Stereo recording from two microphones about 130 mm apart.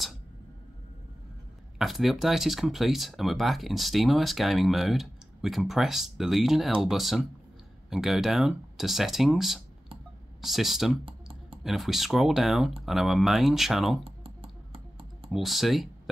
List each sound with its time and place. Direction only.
1.8 s speech: centre (ahead or behind)
11.1 s computer keyboard: 45° right (ahead or behind)
11.6 s speech: centre (ahead or behind)
14.0 s computer keyboard: 45° right (ahead or behind)
15.3 s speech: centre (ahead or behind)